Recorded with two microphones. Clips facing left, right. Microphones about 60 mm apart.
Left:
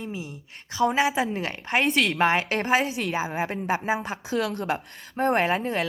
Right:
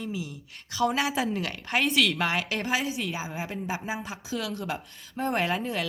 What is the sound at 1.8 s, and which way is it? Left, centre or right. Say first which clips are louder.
Speech: left 1 dB; left.